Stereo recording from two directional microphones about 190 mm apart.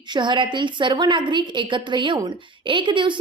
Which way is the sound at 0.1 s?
25° right (ahead or behind).